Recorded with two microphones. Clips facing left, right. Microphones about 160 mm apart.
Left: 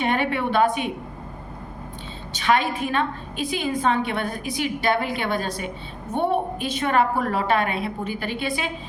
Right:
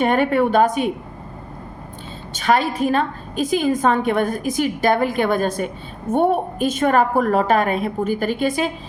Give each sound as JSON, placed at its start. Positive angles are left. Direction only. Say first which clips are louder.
{"t": 0.0, "sound": "a woman's voice", "louder": "right 6 dB", "side_deg": -45}
{"t": 2.3, "sound": "a woman's voice", "louder": "right 3 dB", "side_deg": -40}